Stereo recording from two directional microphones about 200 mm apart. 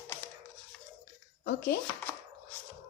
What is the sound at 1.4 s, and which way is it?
Speech, 50° left (ahead or behind).